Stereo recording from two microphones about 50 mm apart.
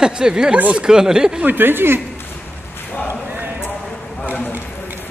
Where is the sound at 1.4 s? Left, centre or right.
Right.